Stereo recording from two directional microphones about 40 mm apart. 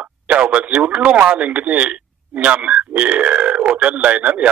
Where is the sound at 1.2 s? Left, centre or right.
Right.